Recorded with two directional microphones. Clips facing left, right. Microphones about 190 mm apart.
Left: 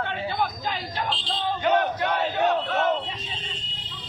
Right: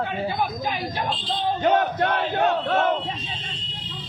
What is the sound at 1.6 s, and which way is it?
Battle cry, 45° right (ahead or behind).